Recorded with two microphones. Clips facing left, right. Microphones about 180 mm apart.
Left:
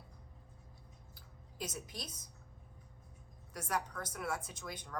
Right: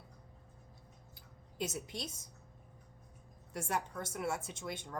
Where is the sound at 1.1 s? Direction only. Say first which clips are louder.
Right 5 dB; 25° right (ahead or behind).